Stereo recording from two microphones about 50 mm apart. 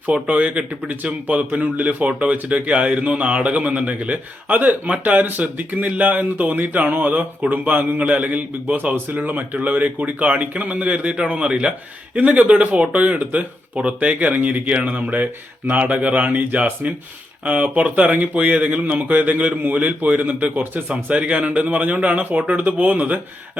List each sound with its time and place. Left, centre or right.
0.0 s a man's voice: right
20.9 s a man's voice: right